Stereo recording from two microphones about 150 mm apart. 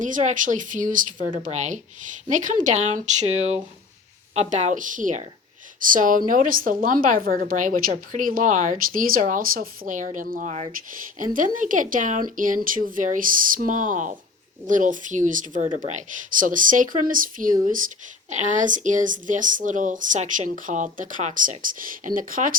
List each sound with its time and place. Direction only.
0.0 s a woman's voice: 55° right (ahead or behind)